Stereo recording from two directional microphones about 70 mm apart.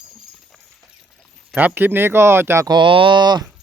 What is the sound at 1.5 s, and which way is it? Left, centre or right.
Speech, right.